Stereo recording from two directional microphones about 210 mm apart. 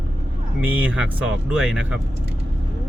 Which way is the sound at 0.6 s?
5° right (ahead or behind).